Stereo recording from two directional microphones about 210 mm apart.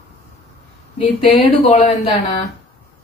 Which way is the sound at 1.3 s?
30° left (ahead or behind).